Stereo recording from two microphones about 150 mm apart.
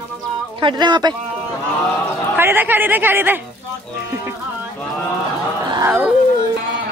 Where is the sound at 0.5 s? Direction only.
30° right (ahead or behind).